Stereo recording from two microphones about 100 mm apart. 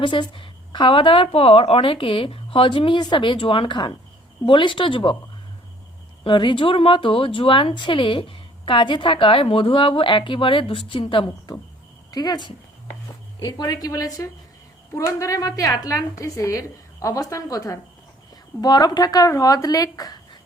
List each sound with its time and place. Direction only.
0.0 s a woman's voice: 55° left (ahead or behind)
6.2 s speech: 50° left (ahead or behind)
12.1 s a woman's voice: 45° left (ahead or behind)
18.6 s a woman's voice: 45° left (ahead or behind)